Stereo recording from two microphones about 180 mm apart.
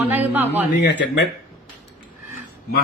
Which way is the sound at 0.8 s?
70° left (ahead or behind).